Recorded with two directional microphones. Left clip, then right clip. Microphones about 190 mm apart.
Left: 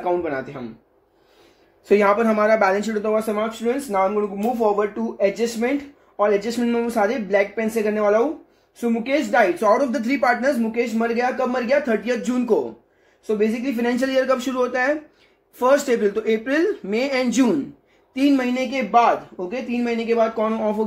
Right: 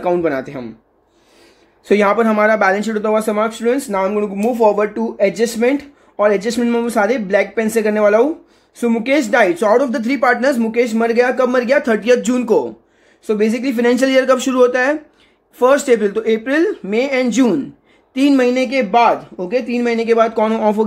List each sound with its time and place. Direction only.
0.0 s speech: 60° right (ahead or behind)
1.9 s speech: 30° right (ahead or behind)
10.6 s speech: 40° right (ahead or behind); by 17.6 s 20° right (ahead or behind)
18.1 s speech: 30° right (ahead or behind)